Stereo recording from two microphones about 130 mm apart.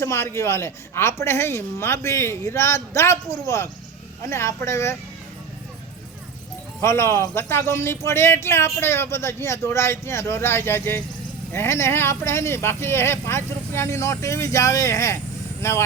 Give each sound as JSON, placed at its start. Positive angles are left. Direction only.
{"t": 0.0, "sound": "a man's voice", "side_deg": 20}
{"t": 6.8, "sound": "a man's voice", "side_deg": 20}